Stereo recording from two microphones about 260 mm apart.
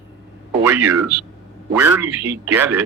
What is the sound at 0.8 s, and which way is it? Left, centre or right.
Speech, right.